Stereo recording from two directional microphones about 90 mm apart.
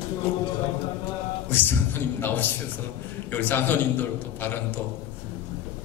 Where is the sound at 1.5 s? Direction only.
20° left (ahead or behind).